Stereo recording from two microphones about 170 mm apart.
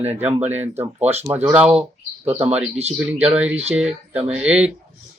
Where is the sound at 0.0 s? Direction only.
10° right (ahead or behind).